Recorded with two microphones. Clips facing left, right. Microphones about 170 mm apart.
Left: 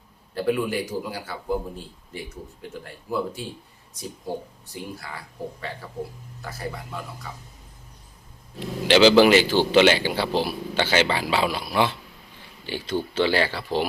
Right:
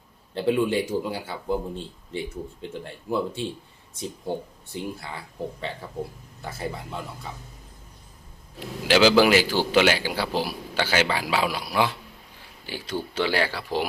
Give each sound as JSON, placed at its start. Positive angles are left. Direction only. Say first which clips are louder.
{"t": 0.3, "sound": "a man's voice", "louder": "right 2 dB", "side_deg": -25}
{"t": 6.4, "sound": "a man's voice", "louder": "right 1 dB", "side_deg": -25}
{"t": 8.9, "sound": "a man's voice", "louder": "left 3 dB", "side_deg": -5}